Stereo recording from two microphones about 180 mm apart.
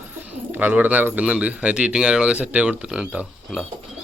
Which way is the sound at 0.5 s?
10° right (ahead or behind).